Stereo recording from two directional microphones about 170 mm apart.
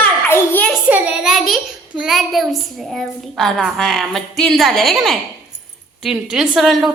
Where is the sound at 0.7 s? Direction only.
5° right (ahead or behind).